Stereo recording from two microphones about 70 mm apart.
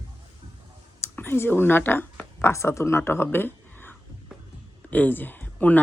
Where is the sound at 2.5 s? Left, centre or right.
Left.